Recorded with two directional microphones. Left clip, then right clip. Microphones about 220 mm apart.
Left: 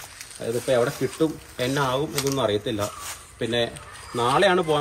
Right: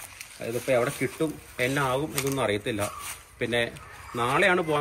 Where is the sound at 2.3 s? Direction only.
20° right (ahead or behind).